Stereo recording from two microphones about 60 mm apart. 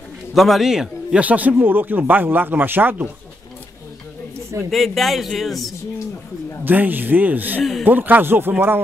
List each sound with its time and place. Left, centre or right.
0.3 s a man's voice: centre
1.2 s speech: right
4.6 s speech: centre
6.6 s speech: right